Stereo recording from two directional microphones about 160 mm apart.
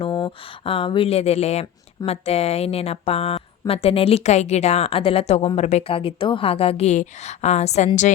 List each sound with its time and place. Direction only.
0.0 s a woman's voice: 35° left (ahead or behind)